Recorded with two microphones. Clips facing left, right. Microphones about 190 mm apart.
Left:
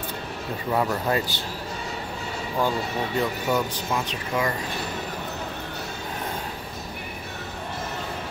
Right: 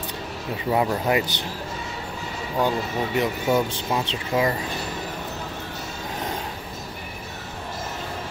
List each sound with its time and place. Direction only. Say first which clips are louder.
0.7 s speech: right 2 dB; 15° right (ahead or behind)
3.2 s speech: right 3 dB; 20° right (ahead or behind)